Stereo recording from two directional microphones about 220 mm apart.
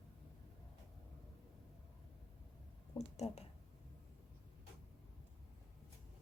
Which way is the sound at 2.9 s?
30° left (ahead or behind).